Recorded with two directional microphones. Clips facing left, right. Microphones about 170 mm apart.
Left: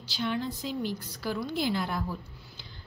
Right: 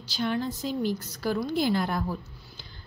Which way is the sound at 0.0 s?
45° right (ahead or behind).